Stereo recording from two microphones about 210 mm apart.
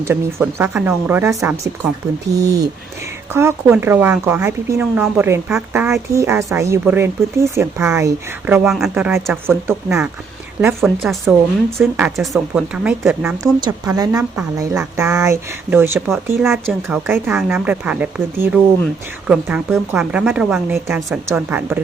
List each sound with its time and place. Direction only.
0.0 s speech: 10° right (ahead or behind)
10.8 s a woman's voice: centre (ahead or behind)
13.4 s a woman's voice: 15° right (ahead or behind)